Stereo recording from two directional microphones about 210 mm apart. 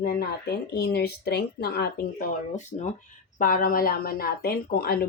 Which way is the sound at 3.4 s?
40° left (ahead or behind).